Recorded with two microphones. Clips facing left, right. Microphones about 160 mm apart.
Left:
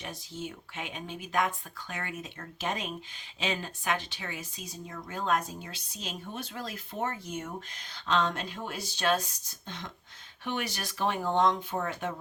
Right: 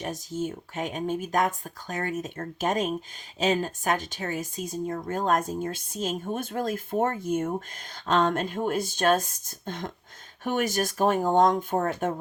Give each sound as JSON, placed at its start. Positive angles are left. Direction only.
{"t": 0.0, "sound": "speech", "side_deg": -45}